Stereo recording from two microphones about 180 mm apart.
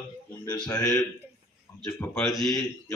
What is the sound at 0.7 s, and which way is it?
Speech, 20° left (ahead or behind).